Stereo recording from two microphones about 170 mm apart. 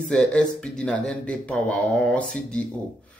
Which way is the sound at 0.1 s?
5° left (ahead or behind).